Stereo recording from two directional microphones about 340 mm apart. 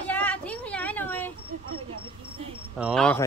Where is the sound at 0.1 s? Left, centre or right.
Centre.